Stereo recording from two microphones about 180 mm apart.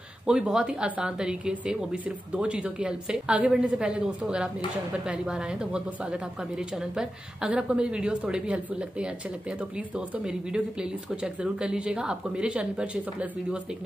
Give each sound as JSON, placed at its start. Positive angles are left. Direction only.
{"t": 0.3, "sound": "a woman's voice", "side_deg": -5}